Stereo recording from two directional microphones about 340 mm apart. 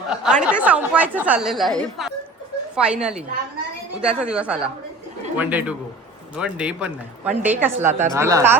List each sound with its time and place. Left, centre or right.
0.1 s speech: centre